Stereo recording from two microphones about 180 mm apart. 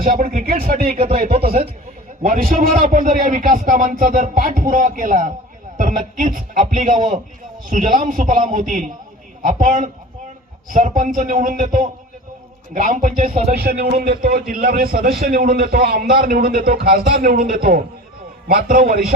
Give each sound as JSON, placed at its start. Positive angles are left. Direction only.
{"t": 0.0, "sound": "a man's voice", "side_deg": -45}